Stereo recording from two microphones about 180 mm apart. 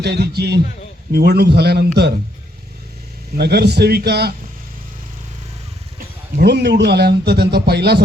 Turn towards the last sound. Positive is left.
turn(degrees=-65)  # may be behind; listen again after turning